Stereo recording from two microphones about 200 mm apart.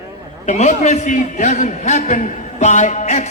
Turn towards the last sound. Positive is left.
turn(degrees=35)  # may be behind; listen again after turning